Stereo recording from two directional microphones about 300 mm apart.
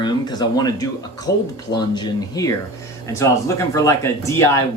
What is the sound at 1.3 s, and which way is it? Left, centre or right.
Speech, left.